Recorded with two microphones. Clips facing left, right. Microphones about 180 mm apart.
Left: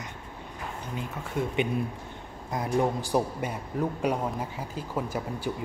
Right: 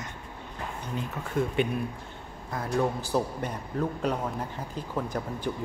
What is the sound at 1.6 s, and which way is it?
A man's voice, 20° left (ahead or behind).